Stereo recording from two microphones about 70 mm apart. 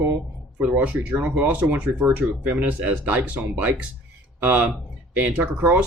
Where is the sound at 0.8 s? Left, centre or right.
Right.